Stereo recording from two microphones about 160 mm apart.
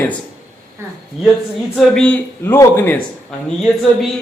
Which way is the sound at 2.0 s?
10° left (ahead or behind).